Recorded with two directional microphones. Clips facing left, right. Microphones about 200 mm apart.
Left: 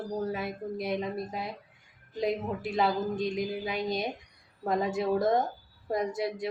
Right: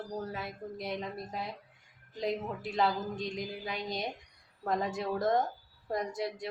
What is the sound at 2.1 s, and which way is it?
A woman's voice, 5° left (ahead or behind).